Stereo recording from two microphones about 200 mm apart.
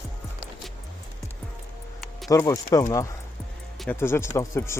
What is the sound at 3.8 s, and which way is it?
Speech, 10° left (ahead or behind).